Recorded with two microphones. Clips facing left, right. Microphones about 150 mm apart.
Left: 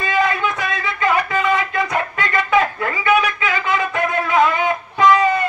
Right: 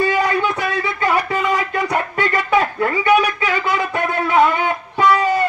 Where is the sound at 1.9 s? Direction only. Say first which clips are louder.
Right 2 dB; 35° right (ahead or behind).